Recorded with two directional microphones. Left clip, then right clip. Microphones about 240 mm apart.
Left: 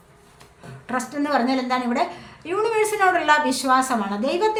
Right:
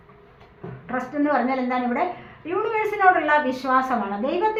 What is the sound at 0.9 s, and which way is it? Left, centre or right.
A woman's voice, left.